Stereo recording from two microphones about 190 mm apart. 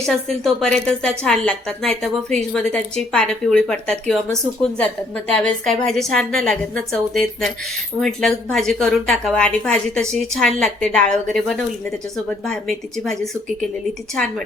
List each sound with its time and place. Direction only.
0.0 s a woman's voice: 5° left (ahead or behind)